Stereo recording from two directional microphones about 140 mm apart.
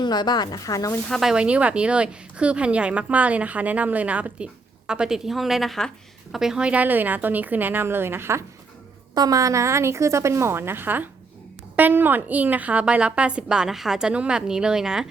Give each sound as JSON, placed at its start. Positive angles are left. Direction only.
{"t": 0.0, "sound": "speech", "side_deg": 30}
{"t": 1.1, "sound": "a woman's voice", "side_deg": -5}